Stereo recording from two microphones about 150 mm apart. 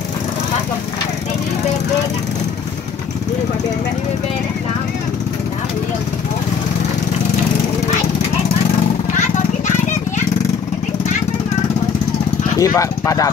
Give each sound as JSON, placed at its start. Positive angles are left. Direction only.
{"t": 12.5, "sound": "speech", "side_deg": 20}